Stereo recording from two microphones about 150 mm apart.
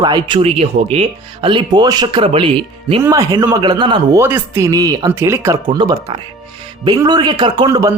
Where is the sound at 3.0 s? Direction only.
20° right (ahead or behind).